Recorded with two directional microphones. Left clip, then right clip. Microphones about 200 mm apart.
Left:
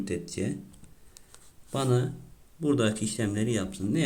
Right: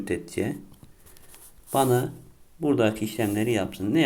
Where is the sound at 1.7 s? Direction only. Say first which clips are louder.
Right 6 dB; 5° right (ahead or behind).